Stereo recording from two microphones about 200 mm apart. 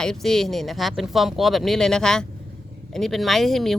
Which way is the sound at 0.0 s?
Centre (ahead or behind).